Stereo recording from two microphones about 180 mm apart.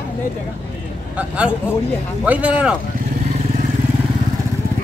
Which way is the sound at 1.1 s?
5° right (ahead or behind).